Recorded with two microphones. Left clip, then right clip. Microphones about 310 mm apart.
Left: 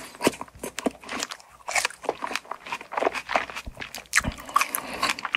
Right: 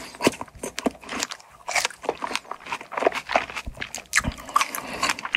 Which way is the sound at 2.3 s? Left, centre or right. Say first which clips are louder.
Right 1 dB; right.